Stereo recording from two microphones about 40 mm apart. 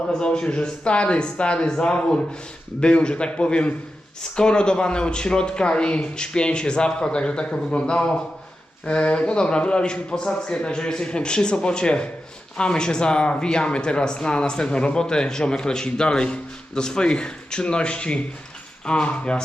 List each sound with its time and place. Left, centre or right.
0.1 s speech: left